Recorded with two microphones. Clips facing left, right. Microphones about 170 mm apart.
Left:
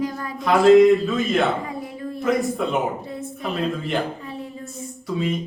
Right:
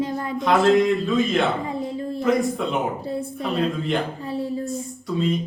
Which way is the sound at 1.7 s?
25° right (ahead or behind).